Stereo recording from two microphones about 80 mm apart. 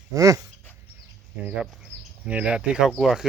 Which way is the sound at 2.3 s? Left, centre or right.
Centre.